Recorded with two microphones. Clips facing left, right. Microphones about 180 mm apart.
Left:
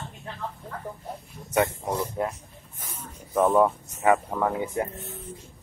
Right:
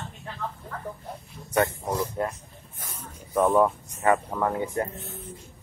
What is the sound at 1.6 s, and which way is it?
Speech, 15° left (ahead or behind).